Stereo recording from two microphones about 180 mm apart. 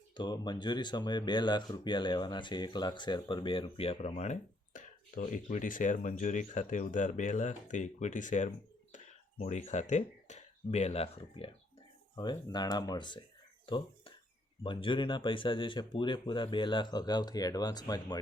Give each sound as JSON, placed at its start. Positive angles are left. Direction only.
{"t": 0.1, "sound": "speech", "side_deg": 25}
{"t": 13.7, "sound": "a sound", "side_deg": 25}
{"t": 14.6, "sound": "speech", "side_deg": 30}